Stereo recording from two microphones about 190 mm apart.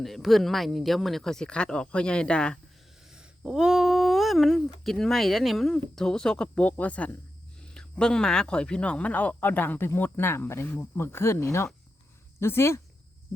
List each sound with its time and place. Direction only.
0.0 s speech: centre (ahead or behind)